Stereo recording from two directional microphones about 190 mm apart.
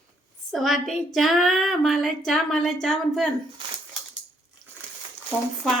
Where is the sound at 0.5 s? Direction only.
Centre (ahead or behind).